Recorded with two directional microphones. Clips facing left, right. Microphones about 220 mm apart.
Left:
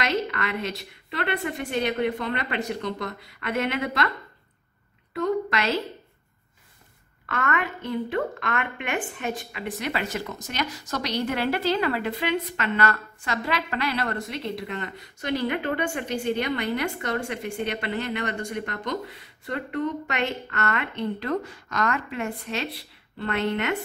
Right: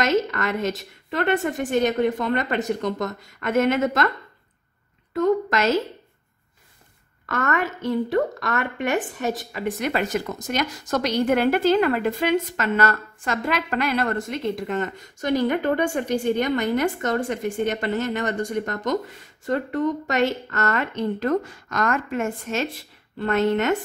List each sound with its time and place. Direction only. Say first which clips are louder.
0.0 s a woman's voice: right 5 dB; 45° right (ahead or behind)
5.1 s a woman's voice: right 5 dB; 45° right (ahead or behind)
7.2 s a woman's voice: right 3 dB; 45° right (ahead or behind)